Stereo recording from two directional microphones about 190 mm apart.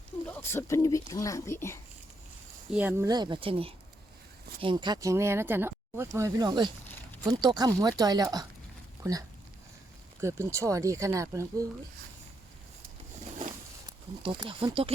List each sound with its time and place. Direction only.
0.3 s speech: 10° left (ahead or behind)
2.7 s speech: 10° right (ahead or behind)
3.1 s speech: 25° right (ahead or behind)
10.2 s speech: 15° right (ahead or behind)
14.2 s speech: 25° right (ahead or behind)